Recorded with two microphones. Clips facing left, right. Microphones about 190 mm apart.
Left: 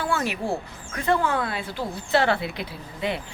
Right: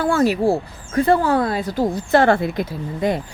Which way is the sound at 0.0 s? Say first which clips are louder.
Right 10 dB; 40° right (ahead or behind).